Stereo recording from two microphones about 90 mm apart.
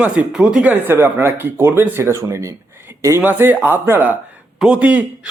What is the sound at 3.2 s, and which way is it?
Speech, 25° right (ahead or behind).